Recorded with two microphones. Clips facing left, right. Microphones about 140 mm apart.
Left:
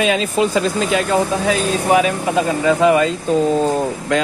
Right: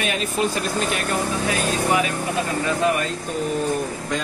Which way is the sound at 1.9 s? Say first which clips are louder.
Left 7 dB; 90° left.